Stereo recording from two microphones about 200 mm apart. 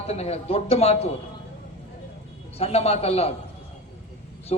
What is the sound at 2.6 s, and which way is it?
Speech, 30° left (ahead or behind).